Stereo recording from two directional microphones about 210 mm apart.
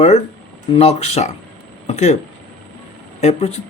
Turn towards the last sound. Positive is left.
turn(degrees=30)  # may be behind; listen again after turning